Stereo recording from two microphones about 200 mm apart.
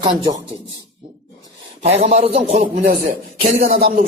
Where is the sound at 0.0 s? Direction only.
20° right (ahead or behind).